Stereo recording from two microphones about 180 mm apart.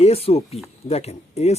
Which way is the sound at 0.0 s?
35° left (ahead or behind).